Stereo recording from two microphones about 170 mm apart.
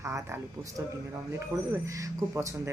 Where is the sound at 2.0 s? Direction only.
20° right (ahead or behind).